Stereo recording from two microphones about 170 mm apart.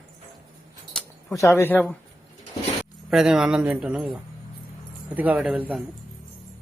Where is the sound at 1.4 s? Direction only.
15° left (ahead or behind).